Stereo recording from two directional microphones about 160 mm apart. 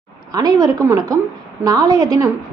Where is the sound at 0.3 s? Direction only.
25° right (ahead or behind).